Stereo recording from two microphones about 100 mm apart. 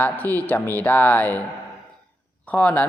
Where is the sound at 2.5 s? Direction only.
15° left (ahead or behind).